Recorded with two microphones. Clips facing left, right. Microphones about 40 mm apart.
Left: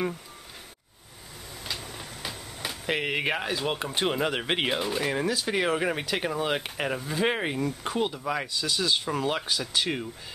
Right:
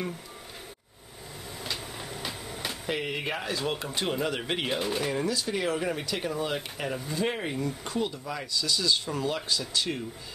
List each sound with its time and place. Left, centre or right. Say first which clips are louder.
1.6 s vehicle: even; centre
2.9 s speech: left 5 dB; left
3.3 s speech: left 2 dB; left
4.7 s speech: left 1 dB; centre
5.0 s speech: left 2 dB; centre
5.5 s speech: left 3 dB; left